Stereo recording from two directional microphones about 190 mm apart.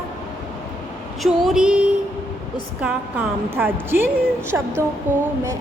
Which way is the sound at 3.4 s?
10° right (ahead or behind).